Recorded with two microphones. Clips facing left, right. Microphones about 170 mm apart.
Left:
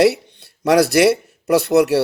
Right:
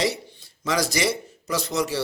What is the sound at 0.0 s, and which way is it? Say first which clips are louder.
A man's voice: left 11 dB; 65° left (ahead or behind).